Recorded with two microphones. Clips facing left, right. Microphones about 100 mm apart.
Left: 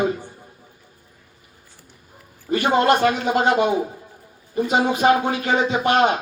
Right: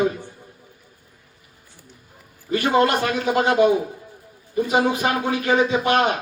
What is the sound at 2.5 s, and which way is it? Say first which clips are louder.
Speech: left 1 dB; 25° left (ahead or behind).